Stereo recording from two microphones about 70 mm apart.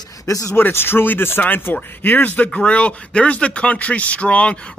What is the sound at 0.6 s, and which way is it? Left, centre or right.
Speech, left.